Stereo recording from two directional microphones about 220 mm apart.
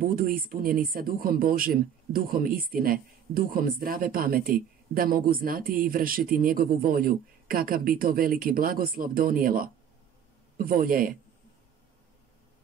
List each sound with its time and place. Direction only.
0.0 s speech: 40° right (ahead or behind)